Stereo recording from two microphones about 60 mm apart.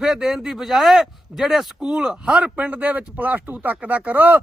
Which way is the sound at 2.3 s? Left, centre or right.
Right.